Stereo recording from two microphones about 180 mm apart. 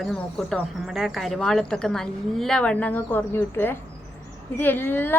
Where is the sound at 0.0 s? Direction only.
5° left (ahead or behind).